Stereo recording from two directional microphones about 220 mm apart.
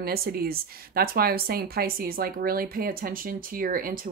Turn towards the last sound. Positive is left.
turn(degrees=-40)  # may be behind; listen again after turning